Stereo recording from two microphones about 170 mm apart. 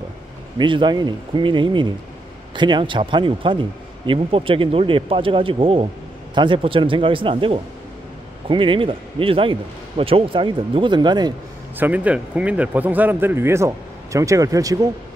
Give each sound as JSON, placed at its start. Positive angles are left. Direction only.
{"t": 0.6, "sound": "speech", "side_deg": -30}
{"t": 11.8, "sound": "speech", "side_deg": -10}